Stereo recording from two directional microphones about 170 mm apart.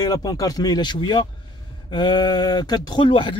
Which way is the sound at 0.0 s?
20° left (ahead or behind).